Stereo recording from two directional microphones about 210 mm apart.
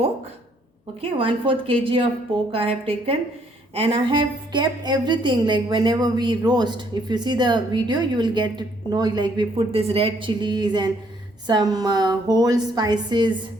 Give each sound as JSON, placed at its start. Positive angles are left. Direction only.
{"t": 1.2, "sound": "a woman's voice", "side_deg": -25}